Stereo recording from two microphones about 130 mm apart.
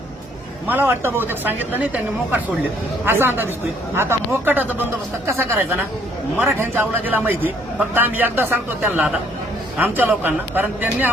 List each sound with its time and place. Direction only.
0.7 s speech: 15° right (ahead or behind)